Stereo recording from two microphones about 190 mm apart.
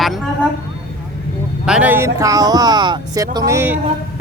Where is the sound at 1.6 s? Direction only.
5° right (ahead or behind).